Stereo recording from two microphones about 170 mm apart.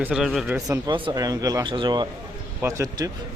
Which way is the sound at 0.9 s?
30° right (ahead or behind).